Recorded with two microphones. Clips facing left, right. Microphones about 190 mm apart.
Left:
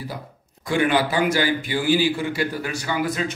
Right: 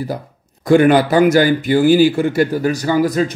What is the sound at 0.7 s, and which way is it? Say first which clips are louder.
A man's voice: right 10 dB; 45° right (ahead or behind).